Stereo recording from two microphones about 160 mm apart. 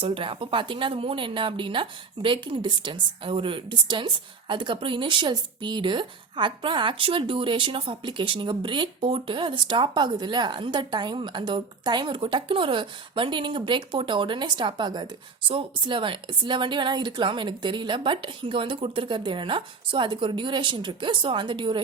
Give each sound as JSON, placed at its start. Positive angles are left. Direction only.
{"t": 0.0, "sound": "speech", "side_deg": -35}